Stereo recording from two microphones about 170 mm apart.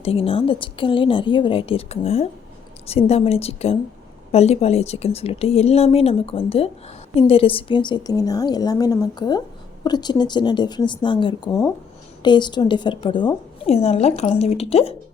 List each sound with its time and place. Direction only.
0.0 s a woman's voice: 35° left (ahead or behind)